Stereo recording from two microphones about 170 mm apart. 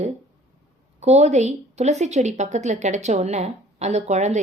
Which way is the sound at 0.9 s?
40° right (ahead or behind).